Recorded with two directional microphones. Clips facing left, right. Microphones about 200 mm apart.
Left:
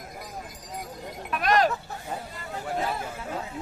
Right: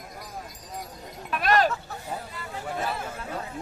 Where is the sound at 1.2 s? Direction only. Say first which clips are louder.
Even; centre (ahead or behind).